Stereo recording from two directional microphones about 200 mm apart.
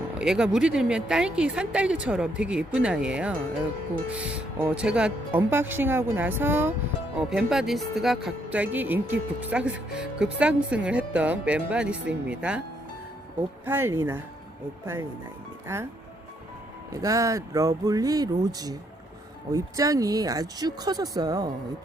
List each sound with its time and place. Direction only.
0.2 s speech: 5° right (ahead or behind)
13.7 s speech: 10° right (ahead or behind)
15.6 s speech: 15° right (ahead or behind)
16.9 s speech: 15° right (ahead or behind)